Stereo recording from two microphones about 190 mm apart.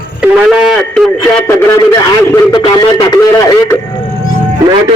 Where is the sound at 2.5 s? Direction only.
20° left (ahead or behind).